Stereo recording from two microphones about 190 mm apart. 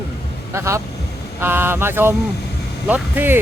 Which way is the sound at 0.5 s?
15° right (ahead or behind).